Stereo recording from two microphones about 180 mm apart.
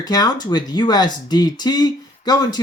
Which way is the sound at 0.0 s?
20° left (ahead or behind).